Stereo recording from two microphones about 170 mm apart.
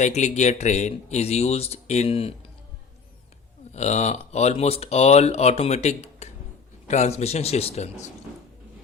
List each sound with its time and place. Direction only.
0.0 s speech: 45° left (ahead or behind)
3.8 s speech: 40° left (ahead or behind)